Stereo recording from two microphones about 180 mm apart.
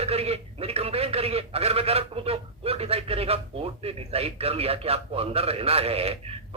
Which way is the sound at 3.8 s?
35° right (ahead or behind).